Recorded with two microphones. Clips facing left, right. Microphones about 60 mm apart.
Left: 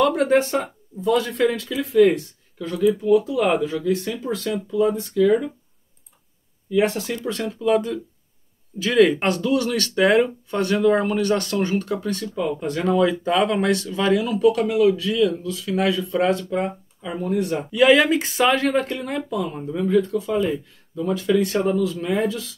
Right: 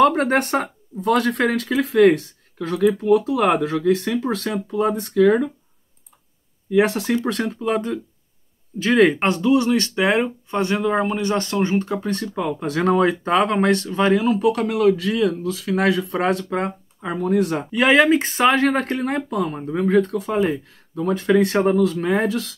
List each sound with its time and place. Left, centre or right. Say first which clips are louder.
0.0 s speech: right 1 dB; right
5.0 s speech: right 2 dB; right
6.7 s speech: right 3 dB; right
7.6 s speech: left 5 dB; right
12.1 s speech: right 1 dB; right
12.5 s speech: right 2 dB; right
12.8 s speech: right 1 dB; right
17.6 s speech: left 1 dB; right